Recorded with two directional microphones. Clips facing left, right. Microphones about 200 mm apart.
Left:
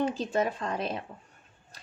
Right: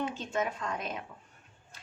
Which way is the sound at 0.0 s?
35° left (ahead or behind).